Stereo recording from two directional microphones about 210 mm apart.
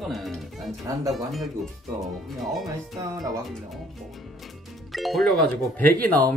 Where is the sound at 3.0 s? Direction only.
15° right (ahead or behind).